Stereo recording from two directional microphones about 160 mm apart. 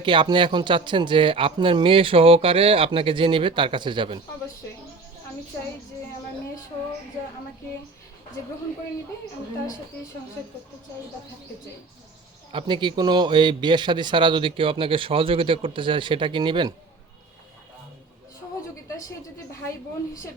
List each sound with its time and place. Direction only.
0.0 s a man's voice: 30° right (ahead or behind)
12.5 s a man's voice: 30° right (ahead or behind)